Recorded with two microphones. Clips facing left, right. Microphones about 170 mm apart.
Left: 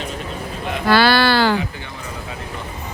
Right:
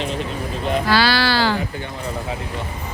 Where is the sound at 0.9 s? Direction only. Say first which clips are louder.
Left 6 dB; 55° left (ahead or behind).